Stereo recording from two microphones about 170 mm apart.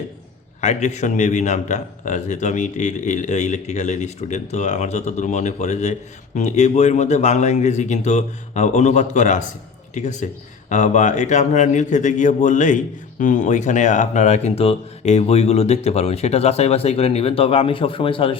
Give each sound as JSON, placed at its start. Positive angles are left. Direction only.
{"t": 0.6, "sound": "a man's voice", "side_deg": 40}